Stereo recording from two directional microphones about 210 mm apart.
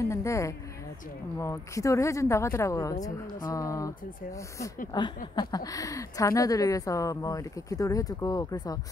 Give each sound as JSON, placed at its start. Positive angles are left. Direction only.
{"t": 0.0, "sound": "speech", "side_deg": 15}
{"t": 4.9, "sound": "speech", "side_deg": 20}